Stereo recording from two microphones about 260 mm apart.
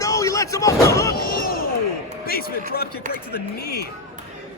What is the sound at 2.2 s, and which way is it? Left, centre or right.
Speech, left.